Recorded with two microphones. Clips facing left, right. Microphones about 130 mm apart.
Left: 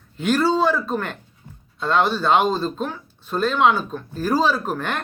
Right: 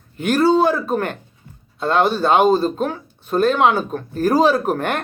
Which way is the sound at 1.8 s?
45° right (ahead or behind).